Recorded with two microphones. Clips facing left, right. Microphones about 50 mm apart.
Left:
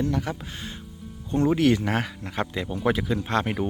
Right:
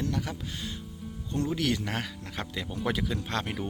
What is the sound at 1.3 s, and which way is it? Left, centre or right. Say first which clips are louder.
Speech: left 8 dB; left.